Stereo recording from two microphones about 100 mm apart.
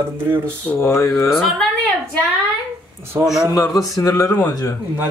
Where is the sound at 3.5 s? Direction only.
35° left (ahead or behind).